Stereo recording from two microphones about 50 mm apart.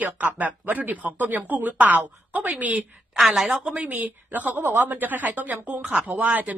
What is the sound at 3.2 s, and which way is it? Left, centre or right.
Speech, centre.